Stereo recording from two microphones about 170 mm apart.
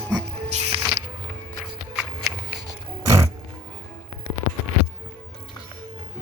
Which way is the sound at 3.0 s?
20° right (ahead or behind).